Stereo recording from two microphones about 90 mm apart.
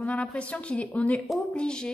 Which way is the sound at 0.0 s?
15° left (ahead or behind).